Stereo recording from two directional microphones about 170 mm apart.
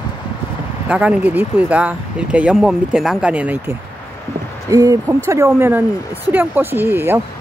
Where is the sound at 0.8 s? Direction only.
5° right (ahead or behind).